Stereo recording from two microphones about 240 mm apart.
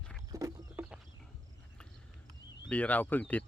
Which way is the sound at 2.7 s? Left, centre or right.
Centre.